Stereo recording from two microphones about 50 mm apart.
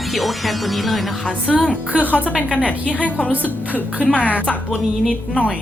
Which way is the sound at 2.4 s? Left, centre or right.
Left.